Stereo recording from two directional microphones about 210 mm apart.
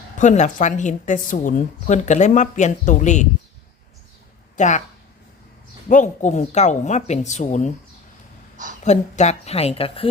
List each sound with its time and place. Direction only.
0.2 s speech: 35° left (ahead or behind)
4.5 s speech: 35° left (ahead or behind)
5.9 s speech: 35° left (ahead or behind)
8.8 s speech: 35° left (ahead or behind)